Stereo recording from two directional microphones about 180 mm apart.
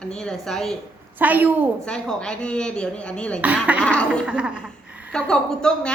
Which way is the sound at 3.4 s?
10° right (ahead or behind).